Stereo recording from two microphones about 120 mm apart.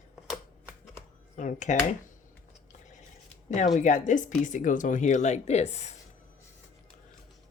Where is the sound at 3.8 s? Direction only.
90° left; by 5.9 s 65° left (ahead or behind).